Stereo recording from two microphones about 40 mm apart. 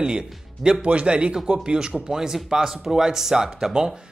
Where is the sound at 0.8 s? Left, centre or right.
Right.